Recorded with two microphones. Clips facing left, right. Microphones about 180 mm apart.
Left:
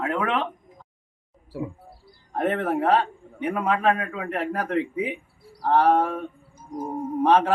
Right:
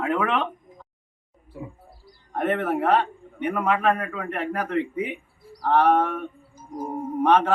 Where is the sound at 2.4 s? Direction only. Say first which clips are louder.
Even; 30° left (ahead or behind).